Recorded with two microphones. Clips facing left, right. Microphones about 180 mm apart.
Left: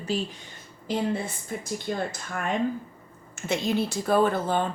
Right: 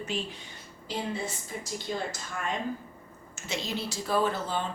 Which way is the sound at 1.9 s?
55° left (ahead or behind).